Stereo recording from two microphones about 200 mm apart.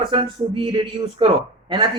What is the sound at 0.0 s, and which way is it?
A man's voice, 25° right (ahead or behind).